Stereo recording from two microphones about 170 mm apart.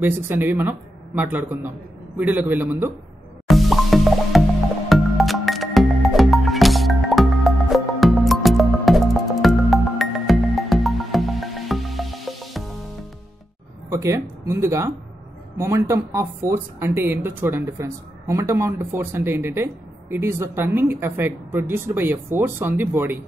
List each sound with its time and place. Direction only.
0.0 s speech: 10° right (ahead or behind)
3.4 s music: centre (ahead or behind)
13.8 s speech: 15° right (ahead or behind)